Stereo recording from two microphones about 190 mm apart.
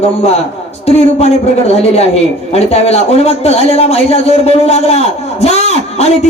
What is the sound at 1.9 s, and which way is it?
A man's voice, 35° left (ahead or behind).